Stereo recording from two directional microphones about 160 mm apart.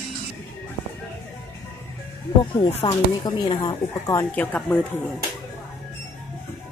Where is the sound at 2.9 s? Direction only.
25° left (ahead or behind).